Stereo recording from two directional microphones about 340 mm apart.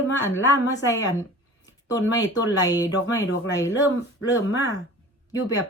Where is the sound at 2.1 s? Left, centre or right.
Centre.